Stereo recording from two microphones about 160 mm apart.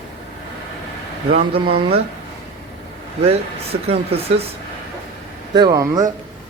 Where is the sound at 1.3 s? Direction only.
35° right (ahead or behind).